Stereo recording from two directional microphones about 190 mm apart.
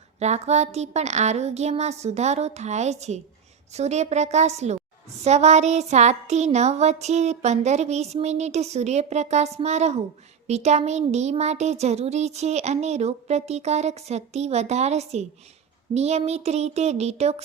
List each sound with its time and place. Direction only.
0.2 s speech: 35° right (ahead or behind)